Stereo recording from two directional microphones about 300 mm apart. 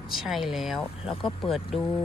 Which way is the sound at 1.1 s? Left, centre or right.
Centre.